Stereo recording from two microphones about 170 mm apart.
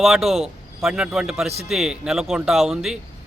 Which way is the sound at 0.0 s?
Centre (ahead or behind).